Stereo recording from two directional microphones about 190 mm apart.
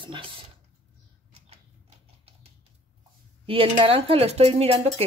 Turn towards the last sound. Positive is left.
turn(degrees=-30)  # may be behind; listen again after turning